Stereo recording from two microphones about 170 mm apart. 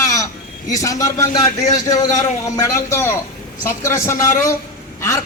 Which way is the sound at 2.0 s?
40° left (ahead or behind).